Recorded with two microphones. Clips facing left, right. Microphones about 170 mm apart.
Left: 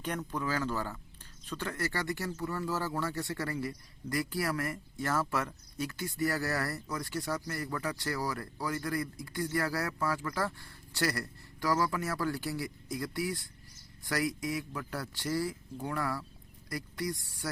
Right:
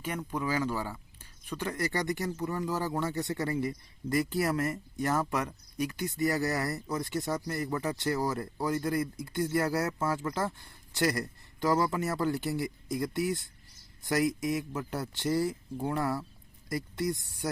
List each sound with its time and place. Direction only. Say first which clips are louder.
0.0 s speech: right 1 dB; 10° right (ahead or behind)